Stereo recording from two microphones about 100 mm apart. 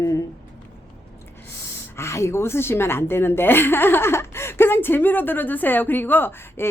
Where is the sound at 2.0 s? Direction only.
30° left (ahead or behind).